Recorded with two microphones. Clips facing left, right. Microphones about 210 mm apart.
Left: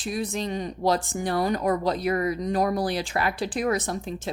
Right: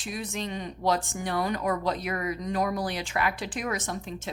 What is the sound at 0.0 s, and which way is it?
A woman's voice, 35° left (ahead or behind).